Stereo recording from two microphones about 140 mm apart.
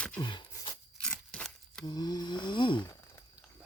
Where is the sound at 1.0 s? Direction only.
5° left (ahead or behind).